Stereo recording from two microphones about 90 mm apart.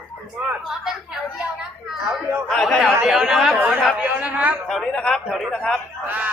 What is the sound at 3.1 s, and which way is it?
Speech, 5° right (ahead or behind).